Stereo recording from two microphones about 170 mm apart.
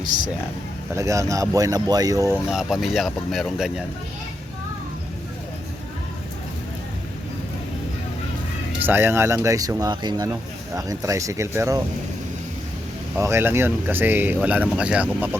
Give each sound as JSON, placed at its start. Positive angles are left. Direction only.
{"t": 0.9, "sound": "speech", "side_deg": -20}
{"t": 2.5, "sound": "speech", "side_deg": -5}
{"t": 8.9, "sound": "speech", "side_deg": -15}
{"t": 13.1, "sound": "speech", "side_deg": -15}